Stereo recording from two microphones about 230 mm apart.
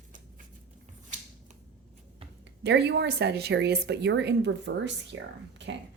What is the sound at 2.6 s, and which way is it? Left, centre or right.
A woman's voice, right.